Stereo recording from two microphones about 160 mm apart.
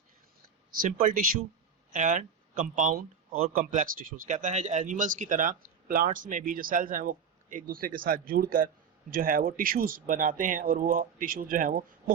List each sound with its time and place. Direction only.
0.8 s speech: 60° right (ahead or behind)